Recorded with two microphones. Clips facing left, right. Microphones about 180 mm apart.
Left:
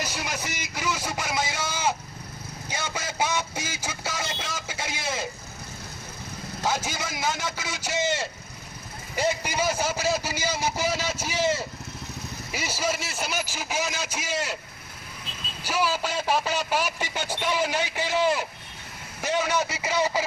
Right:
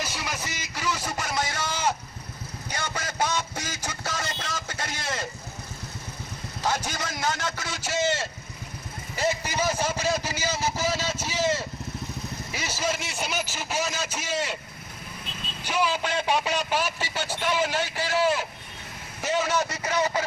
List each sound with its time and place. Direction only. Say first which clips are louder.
0.8 s a man's voice: even; centre (ahead or behind)
1.2 s a sound: even; 5° left (ahead or behind)
6.7 s a man's voice: even; 5° left (ahead or behind)
7.8 s a man's voice: right 1 dB; 15° left (ahead or behind)
9.1 s a sound: left 1 dB; 10° left (ahead or behind)
12.5 s a man's voice: left 1 dB; 10° left (ahead or behind)
15.6 s a man's voice: even; 5° left (ahead or behind)
19.2 s a man's voice: even; centre (ahead or behind)